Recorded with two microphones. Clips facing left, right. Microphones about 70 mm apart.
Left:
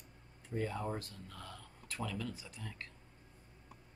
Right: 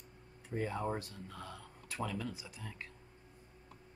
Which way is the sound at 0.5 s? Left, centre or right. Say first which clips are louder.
Right 2 dB; centre.